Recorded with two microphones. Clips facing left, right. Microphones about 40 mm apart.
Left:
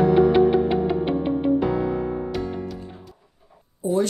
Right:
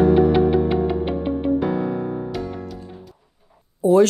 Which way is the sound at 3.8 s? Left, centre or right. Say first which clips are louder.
Right 8 dB; right.